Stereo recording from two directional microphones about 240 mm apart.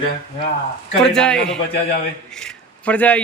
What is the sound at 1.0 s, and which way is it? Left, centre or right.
Speech, centre.